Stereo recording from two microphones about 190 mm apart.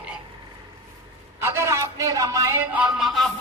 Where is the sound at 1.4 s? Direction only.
15° right (ahead or behind).